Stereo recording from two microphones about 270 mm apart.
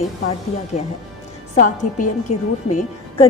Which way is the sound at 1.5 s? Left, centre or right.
Left.